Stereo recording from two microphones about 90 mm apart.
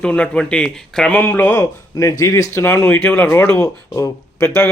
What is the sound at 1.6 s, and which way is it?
Speech, 40° left (ahead or behind).